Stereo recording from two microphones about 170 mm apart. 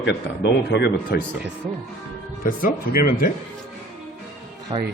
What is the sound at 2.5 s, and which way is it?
Speech, 55° left (ahead or behind).